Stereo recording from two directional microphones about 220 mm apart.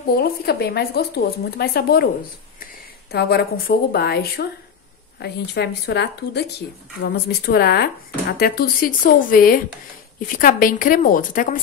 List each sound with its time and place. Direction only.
0.2 s a woman's voice: 45° left (ahead or behind)